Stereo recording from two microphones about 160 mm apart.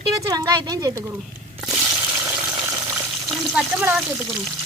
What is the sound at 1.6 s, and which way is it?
Water, 5° right (ahead or behind).